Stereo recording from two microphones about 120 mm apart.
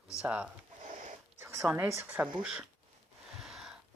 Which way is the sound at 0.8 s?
75° right (ahead or behind).